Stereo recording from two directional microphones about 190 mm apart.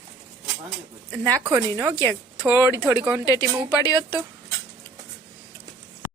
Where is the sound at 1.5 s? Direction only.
15° right (ahead or behind).